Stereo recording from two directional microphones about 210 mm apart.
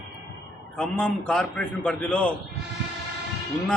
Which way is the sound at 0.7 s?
5° left (ahead or behind).